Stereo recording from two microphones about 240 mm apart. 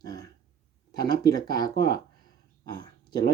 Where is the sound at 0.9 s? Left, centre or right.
Centre.